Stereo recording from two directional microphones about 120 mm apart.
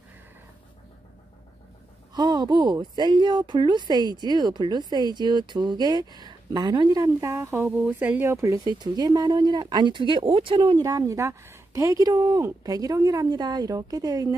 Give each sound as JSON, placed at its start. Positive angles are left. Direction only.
{"t": 2.1, "sound": "speech", "side_deg": -35}
{"t": 10.9, "sound": "speech", "side_deg": -25}